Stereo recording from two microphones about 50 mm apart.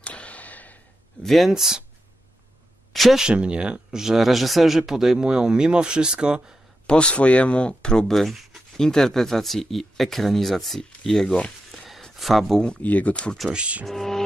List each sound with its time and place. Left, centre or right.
0.0 s a sound: left
1.2 s speech: centre
1.5 s speech: centre
2.9 s a sound: centre
3.2 s speech: centre
6.9 s speech: left
8.1 s speech: centre
11.7 s a sound: centre
12.6 s speech: left
13.5 s speech: right
13.8 s music: centre